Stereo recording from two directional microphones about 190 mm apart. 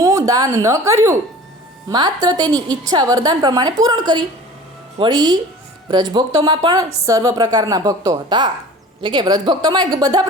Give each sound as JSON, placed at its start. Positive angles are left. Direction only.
{"t": 0.0, "sound": "a woman's voice", "side_deg": -20}